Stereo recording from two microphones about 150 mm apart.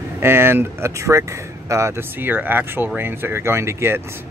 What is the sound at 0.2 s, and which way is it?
Speech, 15° right (ahead or behind).